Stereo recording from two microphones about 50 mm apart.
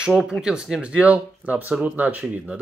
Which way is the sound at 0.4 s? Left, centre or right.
Centre.